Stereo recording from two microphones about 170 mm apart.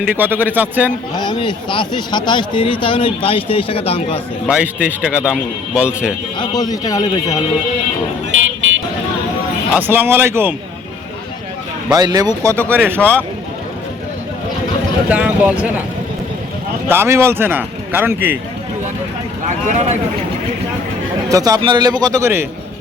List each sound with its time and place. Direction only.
0.0 s a man's voice: 10° right (ahead or behind)
1.1 s a man's voice: 25° left (ahead or behind)
4.4 s a man's voice: 5° right (ahead or behind)
6.4 s a man's voice: 25° left (ahead or behind)
9.7 s a man's voice: 10° right (ahead or behind)
11.9 s a man's voice: 20° right (ahead or behind)
12.5 s speech: 10° left (ahead or behind)
15.1 s a man's voice: 10° right (ahead or behind)
16.9 s a man's voice: 15° right (ahead or behind)
19.5 s speech: 45° right (ahead or behind)
21.2 s a man's voice: 20° right (ahead or behind)